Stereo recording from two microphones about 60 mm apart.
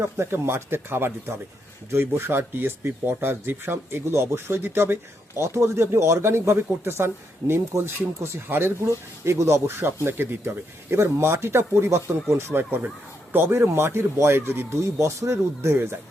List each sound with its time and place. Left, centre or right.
0.0 s speech: right
5.4 s speech: right
9.2 s speech: right
9.6 s speech: right
14.9 s speech: right